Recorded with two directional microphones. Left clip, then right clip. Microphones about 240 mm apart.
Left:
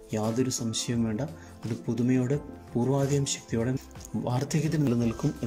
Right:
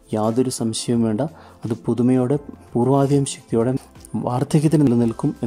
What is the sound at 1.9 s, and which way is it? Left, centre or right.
A man's voice, centre.